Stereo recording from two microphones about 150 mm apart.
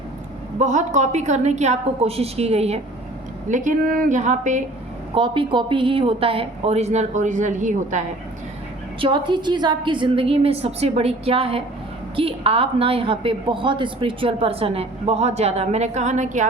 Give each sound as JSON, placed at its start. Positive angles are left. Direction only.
{"t": 0.6, "sound": "a woman's voice", "side_deg": -55}
{"t": 3.5, "sound": "speech", "side_deg": -60}
{"t": 5.1, "sound": "a woman's voice", "side_deg": -35}
{"t": 9.0, "sound": "a woman's voice", "side_deg": -35}